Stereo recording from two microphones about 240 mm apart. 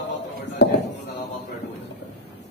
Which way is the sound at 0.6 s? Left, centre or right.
Left.